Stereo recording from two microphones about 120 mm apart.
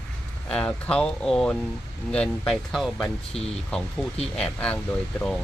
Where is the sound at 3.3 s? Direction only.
55° left (ahead or behind).